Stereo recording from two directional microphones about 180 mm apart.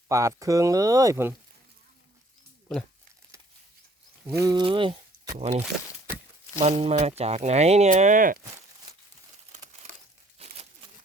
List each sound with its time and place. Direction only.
0.1 s speech: 20° right (ahead or behind)
4.4 s speech: 25° right (ahead or behind); by 8.4 s 45° right (ahead or behind)
10.3 s a sound: 35° right (ahead or behind)